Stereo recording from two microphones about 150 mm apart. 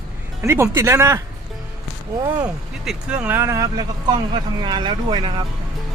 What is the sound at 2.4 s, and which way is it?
Speech, 5° right (ahead or behind).